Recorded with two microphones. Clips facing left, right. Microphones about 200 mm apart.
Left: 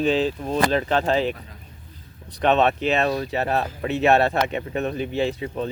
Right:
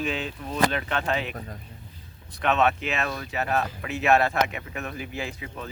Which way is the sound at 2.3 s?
35° left (ahead or behind).